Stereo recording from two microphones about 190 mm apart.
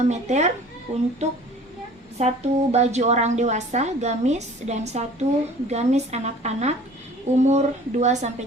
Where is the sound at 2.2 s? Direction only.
35° right (ahead or behind).